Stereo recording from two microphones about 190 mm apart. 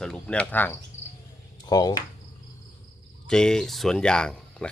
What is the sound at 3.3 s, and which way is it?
Speech, 5° left (ahead or behind).